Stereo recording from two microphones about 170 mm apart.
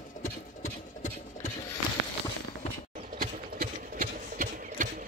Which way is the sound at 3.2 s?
55° right (ahead or behind).